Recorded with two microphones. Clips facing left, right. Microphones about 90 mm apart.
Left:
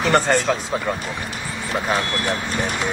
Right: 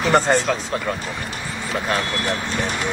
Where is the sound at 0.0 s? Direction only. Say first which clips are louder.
Right 1 dB; 15° right (ahead or behind).